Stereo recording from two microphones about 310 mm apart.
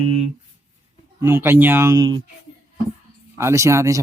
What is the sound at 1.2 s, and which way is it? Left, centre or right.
Speech, centre.